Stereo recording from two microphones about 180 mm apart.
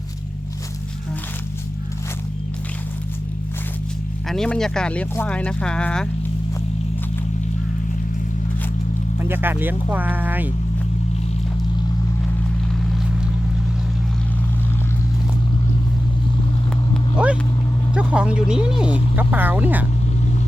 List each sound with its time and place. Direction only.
4.3 s speech: 5° left (ahead or behind)
9.1 s speech: 10° right (ahead or behind)
12.8 s vehicle: centre (ahead or behind)
17.9 s speech: 5° right (ahead or behind)